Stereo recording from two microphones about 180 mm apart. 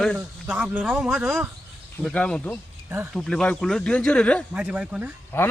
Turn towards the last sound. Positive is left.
turn(degrees=10)  # may be behind; listen again after turning